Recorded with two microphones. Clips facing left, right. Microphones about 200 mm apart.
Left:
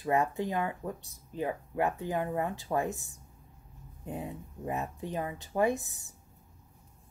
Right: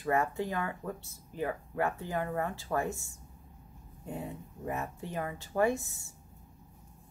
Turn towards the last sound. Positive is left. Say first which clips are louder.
# left 1 dB
turn(degrees=20)  # may be behind; listen again after turning